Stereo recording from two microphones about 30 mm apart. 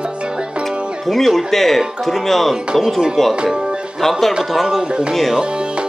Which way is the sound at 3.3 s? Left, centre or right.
Right.